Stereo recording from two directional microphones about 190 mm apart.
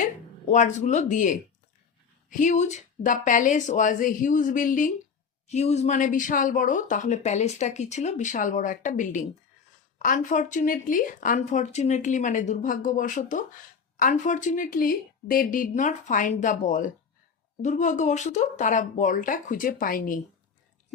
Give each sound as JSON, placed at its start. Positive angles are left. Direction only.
{"t": 0.0, "sound": "speech", "side_deg": 40}